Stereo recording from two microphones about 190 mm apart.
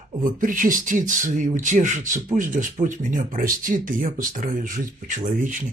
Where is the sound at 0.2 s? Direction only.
45° right (ahead or behind).